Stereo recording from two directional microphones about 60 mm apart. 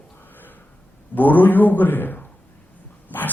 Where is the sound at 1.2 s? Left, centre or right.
Left.